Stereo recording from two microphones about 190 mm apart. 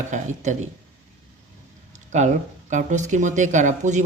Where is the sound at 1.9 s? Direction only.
40° right (ahead or behind).